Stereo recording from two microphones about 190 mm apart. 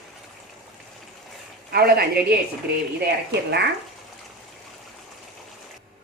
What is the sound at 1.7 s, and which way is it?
Speech, 55° right (ahead or behind).